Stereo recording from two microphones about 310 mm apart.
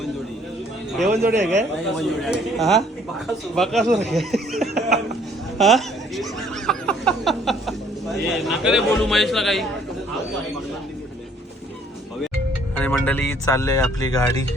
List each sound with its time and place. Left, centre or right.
1.1 s a man's voice: right
2.0 s a man's voice: centre
3.8 s speech: right
4.1 s a man's voice: centre
12.7 s speech: centre